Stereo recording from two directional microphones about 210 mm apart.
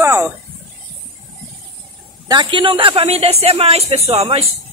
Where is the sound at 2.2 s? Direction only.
20° right (ahead or behind).